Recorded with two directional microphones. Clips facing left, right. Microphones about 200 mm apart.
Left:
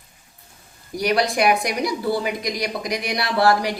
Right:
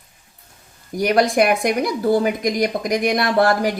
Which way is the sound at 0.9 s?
50° right (ahead or behind).